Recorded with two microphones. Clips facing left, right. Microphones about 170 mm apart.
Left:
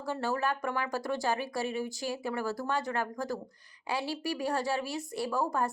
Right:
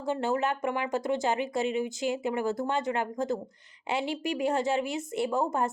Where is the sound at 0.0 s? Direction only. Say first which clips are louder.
Right 4 dB; 20° right (ahead or behind).